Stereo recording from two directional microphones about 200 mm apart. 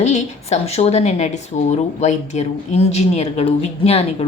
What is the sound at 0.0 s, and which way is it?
A woman's voice, 35° left (ahead or behind).